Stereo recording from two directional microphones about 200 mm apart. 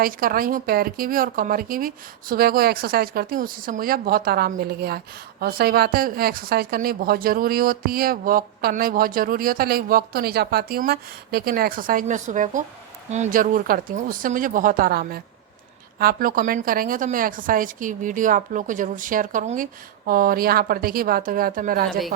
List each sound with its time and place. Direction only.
0.0 s a woman's voice: 45° right (ahead or behind)
21.8 s a woman's voice: centre (ahead or behind)